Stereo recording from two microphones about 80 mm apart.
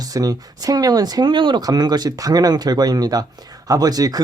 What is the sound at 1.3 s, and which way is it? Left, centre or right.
Speech, right.